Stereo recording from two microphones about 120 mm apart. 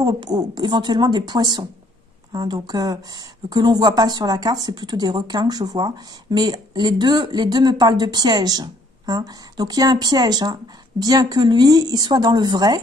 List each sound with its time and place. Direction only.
0.0 s speech: 35° right (ahead or behind)